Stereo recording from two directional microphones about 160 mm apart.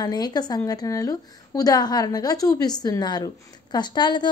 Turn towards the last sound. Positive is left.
turn(degrees=30)  # may be behind; listen again after turning